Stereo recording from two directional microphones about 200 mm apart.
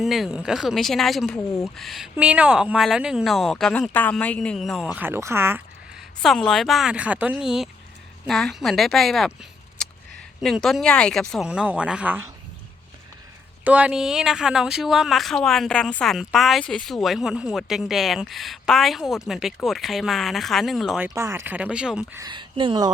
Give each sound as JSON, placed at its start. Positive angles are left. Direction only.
{"t": 0.0, "sound": "speech", "side_deg": 0}
{"t": 13.7, "sound": "speech", "side_deg": -5}
{"t": 21.2, "sound": "speech", "side_deg": -15}
{"t": 22.2, "sound": "speech", "side_deg": -25}